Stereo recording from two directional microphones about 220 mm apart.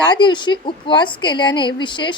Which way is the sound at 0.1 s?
20° left (ahead or behind).